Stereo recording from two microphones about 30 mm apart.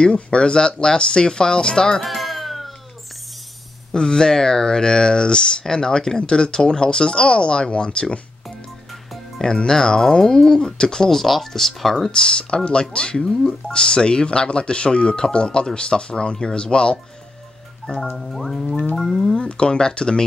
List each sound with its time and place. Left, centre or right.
0.0 s speech: left
2.0 s music: centre
3.9 s speech: left
9.7 s speech: left
11.1 s speech: centre
12.1 s speech: left
17.8 s music: left
18.3 s speech: centre
19.3 s speech: left